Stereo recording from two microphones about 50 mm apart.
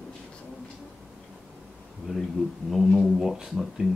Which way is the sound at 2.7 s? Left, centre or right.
Centre.